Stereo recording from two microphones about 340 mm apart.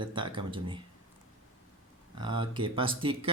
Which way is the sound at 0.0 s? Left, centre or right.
Centre.